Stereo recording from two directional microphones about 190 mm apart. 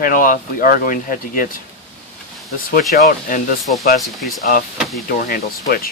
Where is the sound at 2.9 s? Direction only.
50° left (ahead or behind).